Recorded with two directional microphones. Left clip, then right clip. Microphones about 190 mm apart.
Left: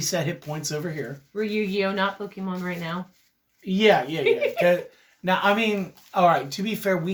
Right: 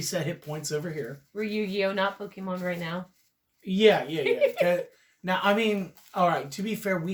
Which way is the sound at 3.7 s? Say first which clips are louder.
Left 2 dB; 25° left (ahead or behind).